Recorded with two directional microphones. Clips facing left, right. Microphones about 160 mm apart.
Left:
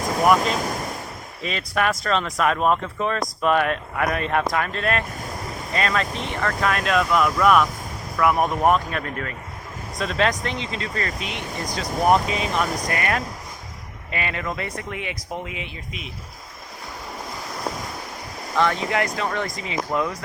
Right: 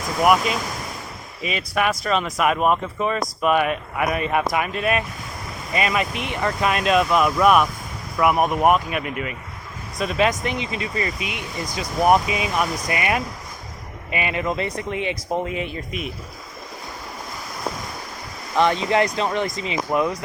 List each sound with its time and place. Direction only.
1.4 s speech: 5° right (ahead or behind); by 15.2 s 25° right (ahead or behind)
15.4 s speech: 45° right (ahead or behind)
18.5 s speech: 20° right (ahead or behind)